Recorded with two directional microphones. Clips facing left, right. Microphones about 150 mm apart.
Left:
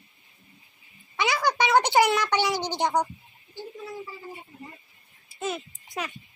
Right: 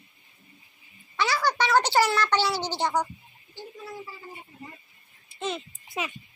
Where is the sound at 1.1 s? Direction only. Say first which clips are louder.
Left 1 dB; 15° left (ahead or behind).